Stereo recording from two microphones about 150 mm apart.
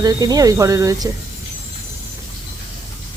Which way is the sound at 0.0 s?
25° right (ahead or behind).